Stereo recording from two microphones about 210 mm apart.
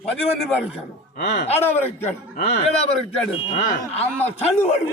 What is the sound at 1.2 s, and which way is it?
Speech, 55° left (ahead or behind).